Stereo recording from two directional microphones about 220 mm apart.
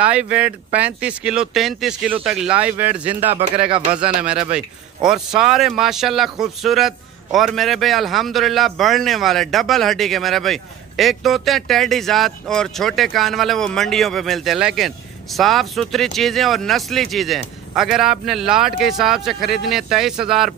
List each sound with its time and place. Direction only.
0.0 s a man's voice: 5° right (ahead or behind)